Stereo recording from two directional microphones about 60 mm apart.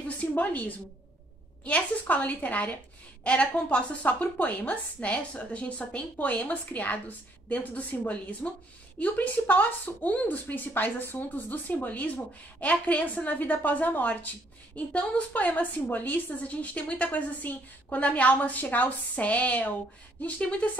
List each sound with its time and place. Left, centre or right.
0.2 s a woman's voice: left